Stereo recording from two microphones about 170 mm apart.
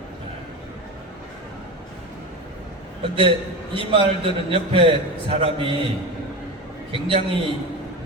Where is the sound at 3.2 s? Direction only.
30° right (ahead or behind).